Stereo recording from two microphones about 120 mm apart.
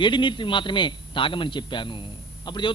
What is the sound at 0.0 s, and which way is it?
A man's voice, 40° left (ahead or behind).